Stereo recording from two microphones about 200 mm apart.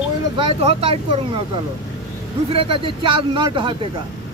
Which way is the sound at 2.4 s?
25° right (ahead or behind).